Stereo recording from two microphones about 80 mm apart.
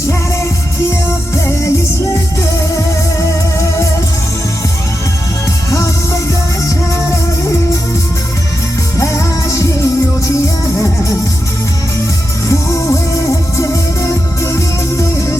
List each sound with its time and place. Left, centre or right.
2.4 s music: left
5.7 s music: left
9.0 s music: left
12.5 s music: left